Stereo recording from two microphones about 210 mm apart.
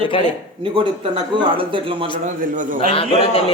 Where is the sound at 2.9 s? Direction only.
25° left (ahead or behind).